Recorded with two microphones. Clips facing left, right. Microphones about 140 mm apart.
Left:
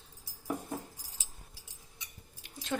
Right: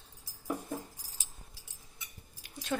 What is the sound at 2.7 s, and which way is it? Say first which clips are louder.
Speech: even; 10° left (ahead or behind).